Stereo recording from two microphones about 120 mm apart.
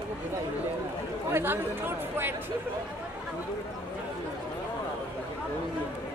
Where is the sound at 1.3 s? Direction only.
20° right (ahead or behind).